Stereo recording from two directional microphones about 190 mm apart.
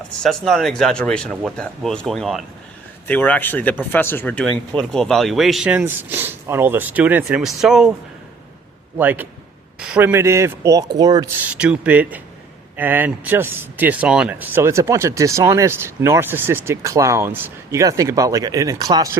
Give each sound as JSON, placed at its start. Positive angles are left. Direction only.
{"t": 0.2, "sound": "speech", "side_deg": 0}
{"t": 9.0, "sound": "speech", "side_deg": -10}
{"t": 11.4, "sound": "speech", "side_deg": -5}